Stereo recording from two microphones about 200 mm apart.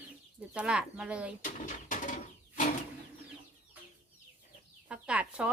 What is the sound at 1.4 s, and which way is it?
Bird, 40° left (ahead or behind).